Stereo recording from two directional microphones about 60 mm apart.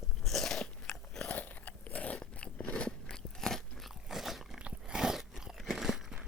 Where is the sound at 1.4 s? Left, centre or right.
Left; by 4.6 s centre.